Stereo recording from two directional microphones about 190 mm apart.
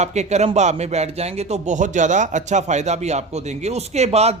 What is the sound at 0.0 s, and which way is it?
Speech, 35° right (ahead or behind).